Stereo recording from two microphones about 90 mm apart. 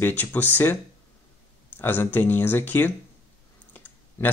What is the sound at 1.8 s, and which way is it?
Speech, 25° left (ahead or behind).